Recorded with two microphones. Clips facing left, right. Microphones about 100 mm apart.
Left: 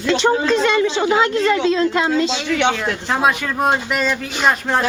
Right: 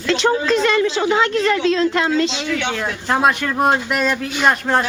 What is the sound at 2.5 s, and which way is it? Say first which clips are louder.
Speech: left 5 dB; 70° left (ahead or behind).